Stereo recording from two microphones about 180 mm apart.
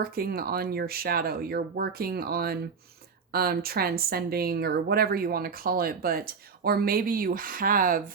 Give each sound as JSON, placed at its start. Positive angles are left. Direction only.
{"t": 0.0, "sound": "speech", "side_deg": -55}